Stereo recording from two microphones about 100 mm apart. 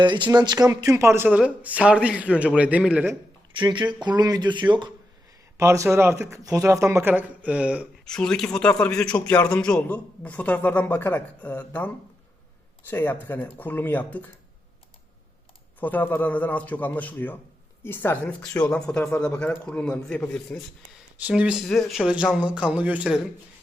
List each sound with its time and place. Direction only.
0.0 s speech: 50° right (ahead or behind); by 1.3 s 25° right (ahead or behind)
1.3 s speech: 10° right (ahead or behind)
3.6 s speech: 50° right (ahead or behind)
5.5 s speech: 30° right (ahead or behind)
7.1 s speech: 15° right (ahead or behind)
8.0 s a man's voice: 10° left (ahead or behind)
12.9 s a man's voice: 20° left (ahead or behind)
15.8 s a man's voice: 15° left (ahead or behind)
18.3 s a man's voice: 10° left (ahead or behind)
21.2 s speech: 10° right (ahead or behind)
21.6 s speech: centre (ahead or behind)
22.1 s speech: 10° right (ahead or behind)